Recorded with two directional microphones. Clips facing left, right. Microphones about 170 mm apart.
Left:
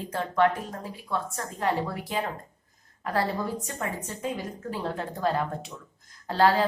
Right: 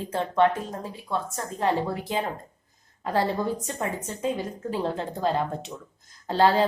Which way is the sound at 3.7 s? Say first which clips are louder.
Right 3 dB; 25° right (ahead or behind).